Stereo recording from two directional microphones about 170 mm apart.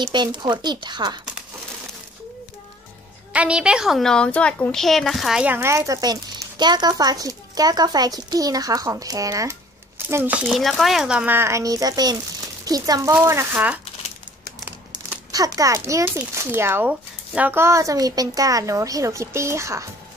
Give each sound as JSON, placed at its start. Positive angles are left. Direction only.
{"t": 0.0, "sound": "a child's voice", "side_deg": -25}
{"t": 3.3, "sound": "a child's voice", "side_deg": -5}
{"t": 15.3, "sound": "a child's voice", "side_deg": -20}